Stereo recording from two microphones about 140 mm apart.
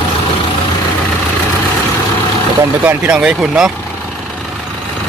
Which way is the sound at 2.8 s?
10° right (ahead or behind).